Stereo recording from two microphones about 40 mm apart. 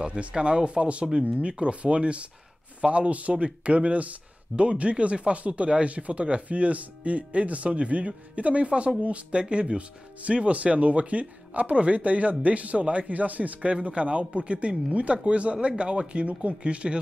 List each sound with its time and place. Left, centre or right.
0.0 s speech: right